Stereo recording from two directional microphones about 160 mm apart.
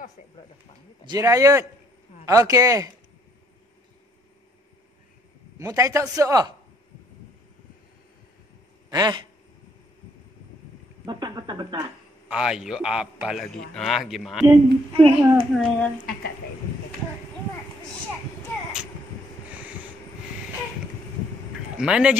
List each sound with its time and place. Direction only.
1.0 s a man's voice: 20° right (ahead or behind)
5.6 s a man's voice: 20° right (ahead or behind)
8.9 s a man's voice: 25° right (ahead or behind)
11.1 s speech: 30° right (ahead or behind)
12.3 s a man's voice: 5° right (ahead or behind)
14.9 s a child's voice: 35° right (ahead or behind)
15.5 s a man's voice: centre (ahead or behind)
21.7 s a man's voice: 5° right (ahead or behind)